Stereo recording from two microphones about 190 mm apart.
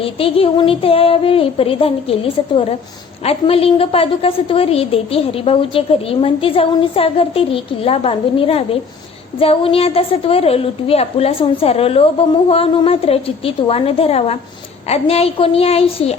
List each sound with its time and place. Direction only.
0.0 s a woman's voice: 30° left (ahead or behind)